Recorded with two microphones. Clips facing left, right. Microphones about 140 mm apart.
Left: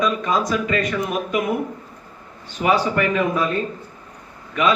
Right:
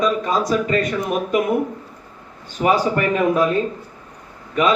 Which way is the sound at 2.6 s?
40° right (ahead or behind).